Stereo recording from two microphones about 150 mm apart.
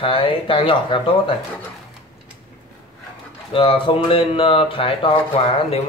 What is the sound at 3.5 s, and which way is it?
A man's voice, 35° left (ahead or behind).